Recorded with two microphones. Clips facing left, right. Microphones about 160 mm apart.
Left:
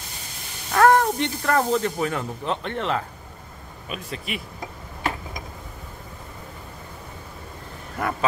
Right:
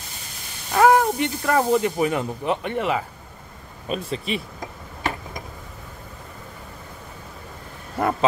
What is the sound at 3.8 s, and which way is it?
Speech, 30° right (ahead or behind).